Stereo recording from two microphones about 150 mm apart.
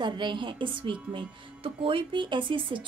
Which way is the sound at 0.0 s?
30° right (ahead or behind).